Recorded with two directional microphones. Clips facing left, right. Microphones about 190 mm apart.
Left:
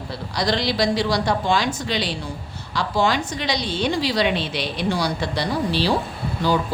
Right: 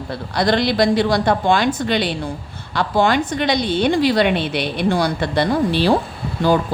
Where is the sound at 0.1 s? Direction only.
55° right (ahead or behind).